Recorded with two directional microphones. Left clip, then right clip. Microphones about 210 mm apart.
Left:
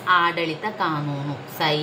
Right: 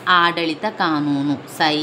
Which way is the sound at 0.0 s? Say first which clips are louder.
Right 4 dB; 45° right (ahead or behind).